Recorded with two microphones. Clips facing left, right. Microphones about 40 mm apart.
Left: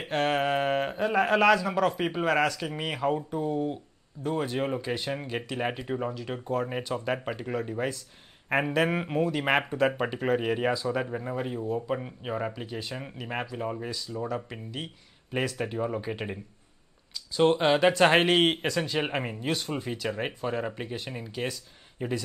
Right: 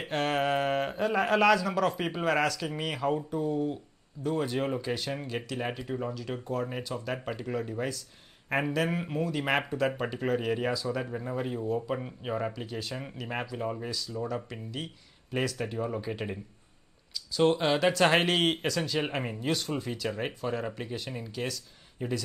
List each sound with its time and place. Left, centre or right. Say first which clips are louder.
0.0 s speech: left 2 dB; centre
17.4 s speech: left 3 dB; centre